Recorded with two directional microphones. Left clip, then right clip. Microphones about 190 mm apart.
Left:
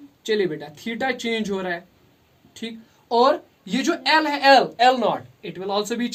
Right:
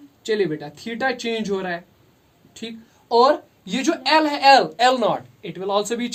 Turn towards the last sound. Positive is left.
turn(degrees=-30)  # may be behind; listen again after turning